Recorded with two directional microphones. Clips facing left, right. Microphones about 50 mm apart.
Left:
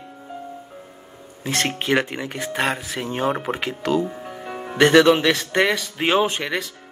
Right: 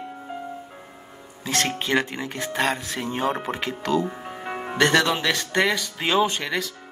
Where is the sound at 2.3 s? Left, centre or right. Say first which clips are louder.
Even; centre.